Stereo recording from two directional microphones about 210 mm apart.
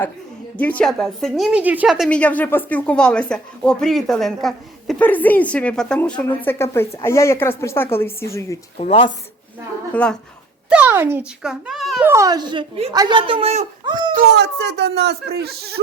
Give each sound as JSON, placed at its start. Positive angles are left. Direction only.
{"t": 0.5, "sound": "a woman's voice", "side_deg": 5}
{"t": 8.8, "sound": "speech", "side_deg": 25}
{"t": 9.9, "sound": "a child's voice", "side_deg": 5}
{"t": 10.7, "sound": "a child's voice", "side_deg": -10}
{"t": 12.0, "sound": "speech", "side_deg": -15}
{"t": 14.1, "sound": "speech", "side_deg": -50}